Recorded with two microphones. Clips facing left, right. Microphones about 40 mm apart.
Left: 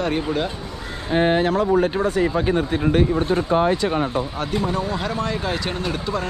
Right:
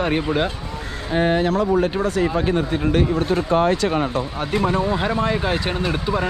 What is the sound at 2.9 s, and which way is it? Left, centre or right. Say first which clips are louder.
Speech: even; right.